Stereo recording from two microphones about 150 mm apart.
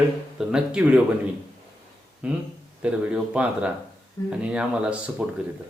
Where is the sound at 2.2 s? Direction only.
10° right (ahead or behind).